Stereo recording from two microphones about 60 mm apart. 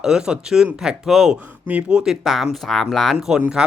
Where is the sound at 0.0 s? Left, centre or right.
Centre.